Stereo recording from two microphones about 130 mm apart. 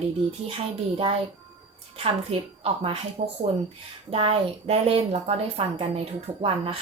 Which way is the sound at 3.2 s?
60° right (ahead or behind).